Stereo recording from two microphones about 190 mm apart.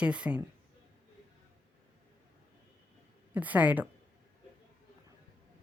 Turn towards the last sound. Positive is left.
turn(degrees=-10)  # may be behind; listen again after turning